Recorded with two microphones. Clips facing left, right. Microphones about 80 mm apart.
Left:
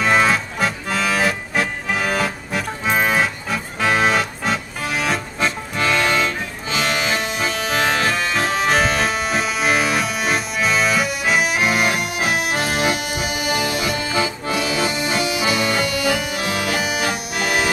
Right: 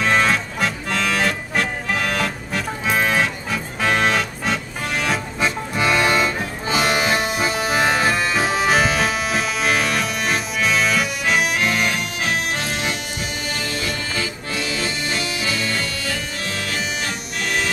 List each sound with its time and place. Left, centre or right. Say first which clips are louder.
0.0 s music: left 2 dB; centre